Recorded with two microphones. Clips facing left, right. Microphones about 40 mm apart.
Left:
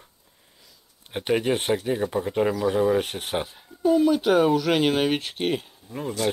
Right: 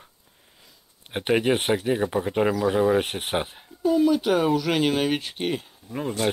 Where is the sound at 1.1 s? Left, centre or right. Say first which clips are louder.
Right 1 dB; right.